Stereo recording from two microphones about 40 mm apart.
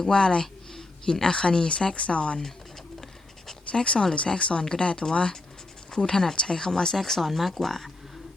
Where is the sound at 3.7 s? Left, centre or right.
Left; by 7.9 s centre.